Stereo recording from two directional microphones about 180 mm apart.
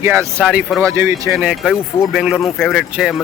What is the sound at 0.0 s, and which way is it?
Speech, 15° right (ahead or behind).